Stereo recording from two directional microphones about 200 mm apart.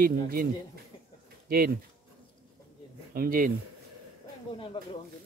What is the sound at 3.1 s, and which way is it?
Speech, 45° right (ahead or behind).